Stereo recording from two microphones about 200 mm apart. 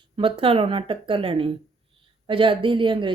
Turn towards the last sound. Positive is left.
turn(degrees=-25)  # may be behind; listen again after turning